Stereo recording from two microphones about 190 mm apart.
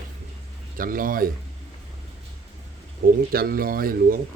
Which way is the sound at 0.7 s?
45° right (ahead or behind).